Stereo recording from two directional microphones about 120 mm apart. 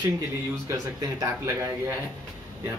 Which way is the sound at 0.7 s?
25° right (ahead or behind).